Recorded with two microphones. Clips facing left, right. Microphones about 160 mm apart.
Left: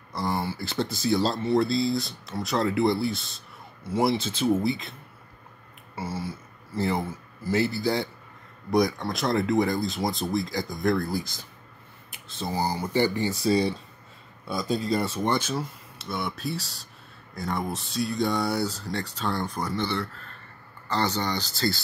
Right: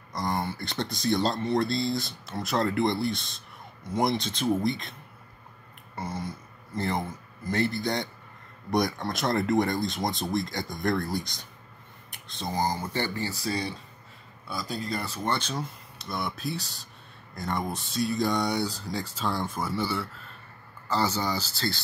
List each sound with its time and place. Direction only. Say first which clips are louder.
0.1 s speech: left 1 dB; 5° left (ahead or behind)
5.9 s speech: left 2 dB; 5° left (ahead or behind); by 15.3 s 25° left (ahead or behind)
15.3 s speech: left 4 dB; 5° left (ahead or behind)